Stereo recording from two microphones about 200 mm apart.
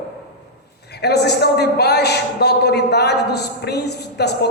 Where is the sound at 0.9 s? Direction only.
55° left (ahead or behind).